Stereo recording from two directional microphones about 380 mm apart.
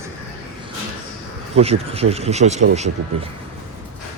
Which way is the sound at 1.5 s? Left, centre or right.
Centre.